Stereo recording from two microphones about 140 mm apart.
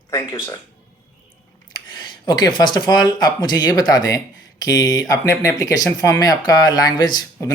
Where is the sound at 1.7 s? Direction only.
30° left (ahead or behind).